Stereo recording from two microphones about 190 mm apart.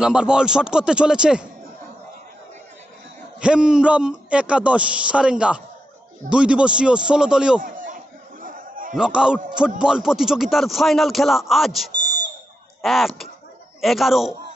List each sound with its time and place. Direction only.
0.0 s a man's voice: 5° right (ahead or behind)
3.3 s a man's voice: 5° right (ahead or behind)
7.6 s chatter: 45° right (ahead or behind)
8.9 s a man's voice: 5° right (ahead or behind)